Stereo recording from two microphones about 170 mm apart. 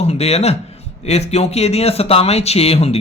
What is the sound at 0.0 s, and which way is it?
Speech, 40° left (ahead or behind).